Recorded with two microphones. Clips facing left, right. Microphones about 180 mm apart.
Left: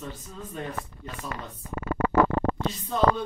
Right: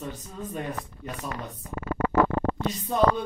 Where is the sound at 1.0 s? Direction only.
15° right (ahead or behind).